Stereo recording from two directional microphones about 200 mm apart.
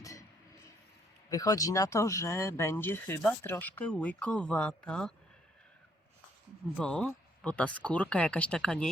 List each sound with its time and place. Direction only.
0.0 s a sound: 15° left (ahead or behind)
1.3 s speech: 15° left (ahead or behind)
6.7 s speech: 5° left (ahead or behind)